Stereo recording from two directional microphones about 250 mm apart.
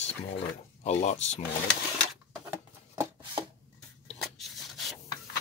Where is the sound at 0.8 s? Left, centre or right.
Left.